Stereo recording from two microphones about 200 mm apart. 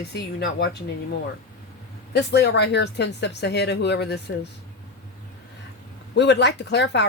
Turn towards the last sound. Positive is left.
turn(degrees=60)  # may be behind; listen again after turning